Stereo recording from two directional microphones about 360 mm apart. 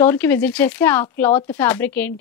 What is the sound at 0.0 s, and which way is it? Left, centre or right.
A woman's voice, centre.